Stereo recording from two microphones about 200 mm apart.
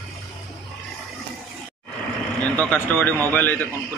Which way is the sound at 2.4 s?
10° left (ahead or behind).